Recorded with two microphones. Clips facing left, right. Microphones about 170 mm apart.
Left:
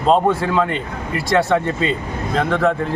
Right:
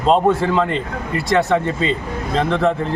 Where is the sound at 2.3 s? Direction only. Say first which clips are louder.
Even; 25° right (ahead or behind).